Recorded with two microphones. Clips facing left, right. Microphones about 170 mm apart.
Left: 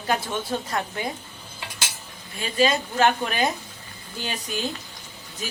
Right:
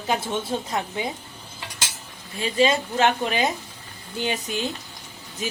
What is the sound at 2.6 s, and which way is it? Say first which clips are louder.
A woman's voice: even; 20° right (ahead or behind).